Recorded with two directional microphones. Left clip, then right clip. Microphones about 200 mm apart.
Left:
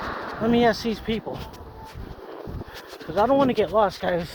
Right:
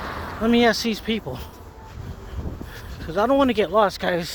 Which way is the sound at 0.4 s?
50° right (ahead or behind).